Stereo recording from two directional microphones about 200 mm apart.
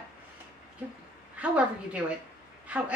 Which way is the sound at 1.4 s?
5° right (ahead or behind).